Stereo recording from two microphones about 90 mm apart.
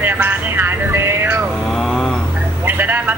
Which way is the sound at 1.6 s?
5° left (ahead or behind).